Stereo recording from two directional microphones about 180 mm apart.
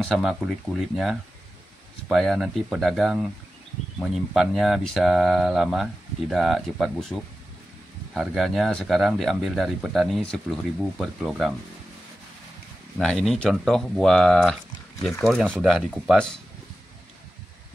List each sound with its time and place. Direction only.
0.0 s speech: centre (ahead or behind)
13.0 s speech: 5° left (ahead or behind)